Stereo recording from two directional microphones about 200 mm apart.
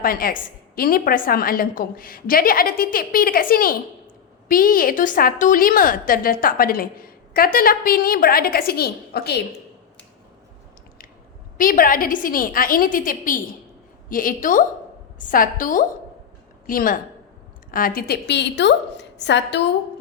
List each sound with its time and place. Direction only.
0.0 s a woman's voice: 45° left (ahead or behind)
11.5 s a woman's voice: 45° left (ahead or behind); by 19.6 s 60° left (ahead or behind)